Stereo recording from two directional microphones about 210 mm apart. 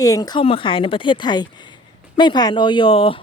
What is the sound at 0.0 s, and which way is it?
Speech, 15° left (ahead or behind).